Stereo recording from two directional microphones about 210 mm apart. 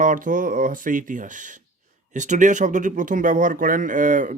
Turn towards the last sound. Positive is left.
turn(degrees=-40)  # may be behind; listen again after turning